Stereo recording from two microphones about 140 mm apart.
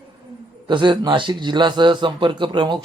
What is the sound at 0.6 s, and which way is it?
A man's voice, 35° right (ahead or behind).